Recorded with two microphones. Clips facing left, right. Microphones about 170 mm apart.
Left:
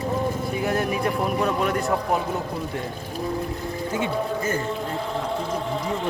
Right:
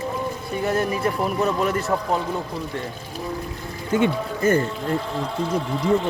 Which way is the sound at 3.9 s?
60° right (ahead or behind).